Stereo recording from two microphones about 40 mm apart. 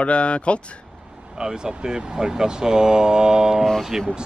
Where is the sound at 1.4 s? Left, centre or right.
Centre.